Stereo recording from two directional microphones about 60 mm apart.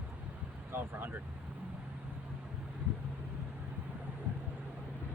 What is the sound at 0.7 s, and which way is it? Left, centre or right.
Speech, right.